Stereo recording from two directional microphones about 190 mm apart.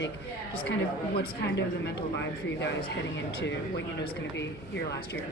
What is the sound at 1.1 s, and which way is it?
Speech, 55° left (ahead or behind).